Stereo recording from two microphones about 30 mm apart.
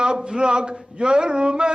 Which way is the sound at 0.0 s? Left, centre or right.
Right.